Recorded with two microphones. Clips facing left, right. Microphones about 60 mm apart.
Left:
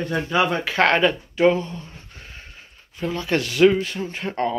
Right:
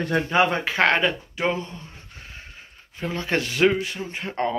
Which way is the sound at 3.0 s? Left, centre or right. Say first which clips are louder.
Left 2 dB; right.